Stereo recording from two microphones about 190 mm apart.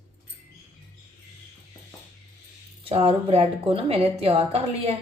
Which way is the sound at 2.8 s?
30° right (ahead or behind).